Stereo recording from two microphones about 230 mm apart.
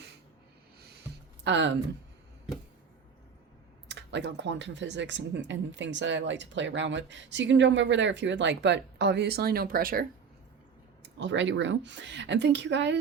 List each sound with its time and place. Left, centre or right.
1.5 s speech: right
3.8 s speech: right
11.2 s speech: right